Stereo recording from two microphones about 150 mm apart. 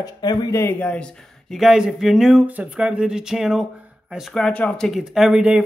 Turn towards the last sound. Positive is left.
turn(degrees=-5)  # may be behind; listen again after turning